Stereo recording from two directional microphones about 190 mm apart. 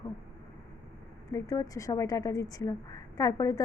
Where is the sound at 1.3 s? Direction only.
20° left (ahead or behind).